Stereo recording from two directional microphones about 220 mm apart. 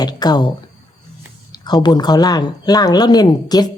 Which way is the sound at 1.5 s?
20° left (ahead or behind).